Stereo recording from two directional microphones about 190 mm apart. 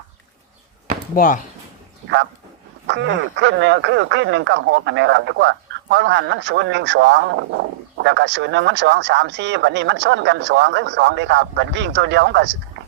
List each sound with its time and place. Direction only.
1.1 s speech: 45° left (ahead or behind)
2.8 s speech: 70° right (ahead or behind)